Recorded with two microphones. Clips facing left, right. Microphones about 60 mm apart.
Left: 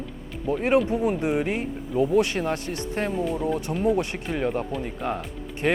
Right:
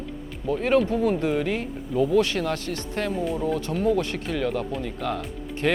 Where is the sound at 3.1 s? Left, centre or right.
Centre.